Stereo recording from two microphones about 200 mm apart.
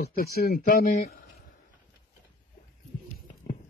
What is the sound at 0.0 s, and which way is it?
Speech, 50° left (ahead or behind).